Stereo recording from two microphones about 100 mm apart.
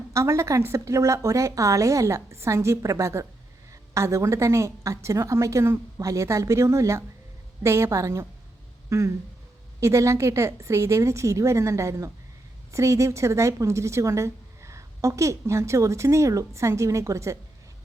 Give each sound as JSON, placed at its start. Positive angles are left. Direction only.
{"t": 0.1, "sound": "a woman's voice", "side_deg": -30}